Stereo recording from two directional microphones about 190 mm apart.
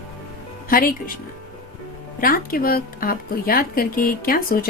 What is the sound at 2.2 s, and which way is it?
Speech, 50° left (ahead or behind).